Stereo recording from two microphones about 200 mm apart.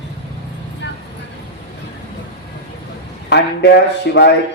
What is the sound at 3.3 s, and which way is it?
Speech, 60° left (ahead or behind).